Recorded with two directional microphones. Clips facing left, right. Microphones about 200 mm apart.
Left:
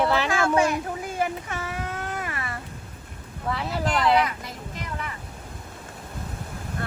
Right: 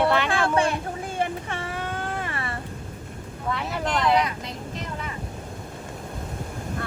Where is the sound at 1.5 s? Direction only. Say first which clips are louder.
Right 1 dB; 30° right (ahead or behind).